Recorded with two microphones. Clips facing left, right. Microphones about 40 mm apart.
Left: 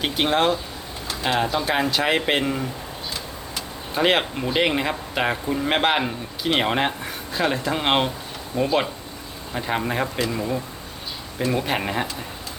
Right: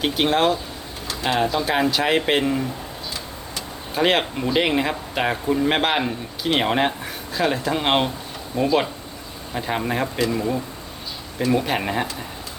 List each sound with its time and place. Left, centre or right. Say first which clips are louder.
0.0 s speech: right 1 dB; centre
3.9 s speech: even; centre